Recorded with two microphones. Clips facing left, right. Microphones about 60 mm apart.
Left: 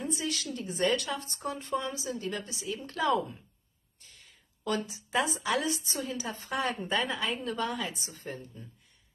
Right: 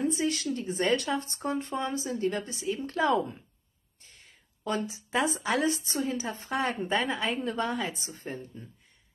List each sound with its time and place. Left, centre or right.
0.0 s speech: right